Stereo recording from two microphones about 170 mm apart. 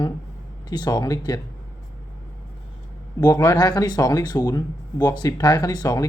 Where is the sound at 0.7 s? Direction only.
25° left (ahead or behind).